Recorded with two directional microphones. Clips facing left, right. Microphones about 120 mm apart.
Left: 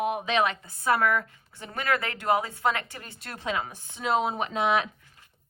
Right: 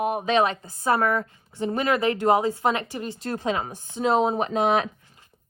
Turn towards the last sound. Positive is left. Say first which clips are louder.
# right 4 dB
turn(degrees=-40)  # may be behind; listen again after turning